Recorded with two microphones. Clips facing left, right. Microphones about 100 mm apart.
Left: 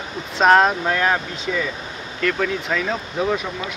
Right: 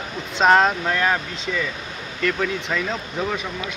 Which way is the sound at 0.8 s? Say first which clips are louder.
Left 2 dB; 15° left (ahead or behind).